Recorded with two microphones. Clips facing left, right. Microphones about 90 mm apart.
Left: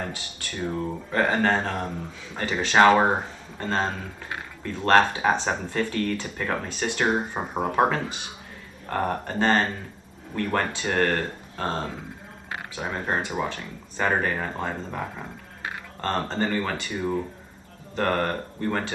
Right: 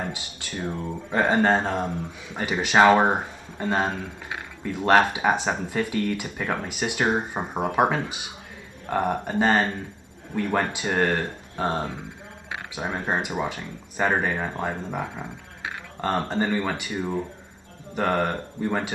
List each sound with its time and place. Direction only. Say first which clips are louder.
1.1 s speech: right 2 dB; 15° right (ahead or behind)
7.1 s speech: even; centre (ahead or behind)
7.6 s speech: even; 10° right (ahead or behind)